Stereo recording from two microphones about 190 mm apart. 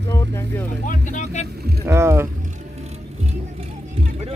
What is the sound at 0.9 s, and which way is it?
Vehicle, 40° left (ahead or behind).